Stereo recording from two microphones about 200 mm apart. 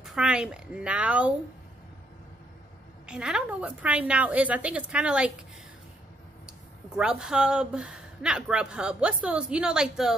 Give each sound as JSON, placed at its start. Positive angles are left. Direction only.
{"t": 0.0, "sound": "speech", "side_deg": 0}
{"t": 3.1, "sound": "a woman's voice", "side_deg": -5}
{"t": 7.0, "sound": "a woman's voice", "side_deg": -5}